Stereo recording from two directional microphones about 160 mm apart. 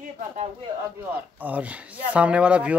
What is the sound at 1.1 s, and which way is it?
Speech, 10° right (ahead or behind).